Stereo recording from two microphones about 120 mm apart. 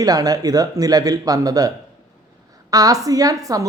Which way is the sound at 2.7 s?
30° right (ahead or behind).